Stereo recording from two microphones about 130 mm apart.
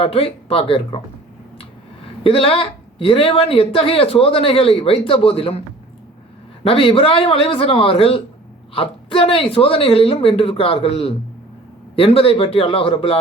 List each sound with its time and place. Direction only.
0.0 s speech: 45° left (ahead or behind)
2.2 s speech: 45° left (ahead or behind)
6.7 s speech: 45° left (ahead or behind)